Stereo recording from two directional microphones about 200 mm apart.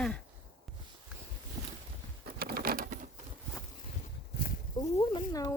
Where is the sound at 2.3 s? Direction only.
50° right (ahead or behind).